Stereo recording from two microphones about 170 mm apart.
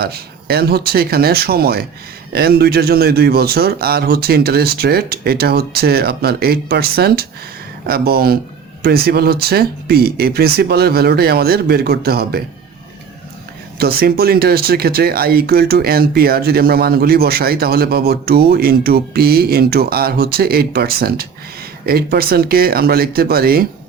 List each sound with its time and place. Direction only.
0.0 s speech: 65° right (ahead or behind)
13.7 s speech: 65° right (ahead or behind)